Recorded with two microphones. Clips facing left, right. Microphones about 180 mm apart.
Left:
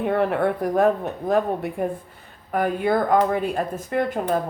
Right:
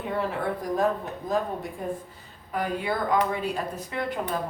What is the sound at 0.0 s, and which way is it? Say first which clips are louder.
A woman's voice: left 8 dB; 60° left (ahead or behind).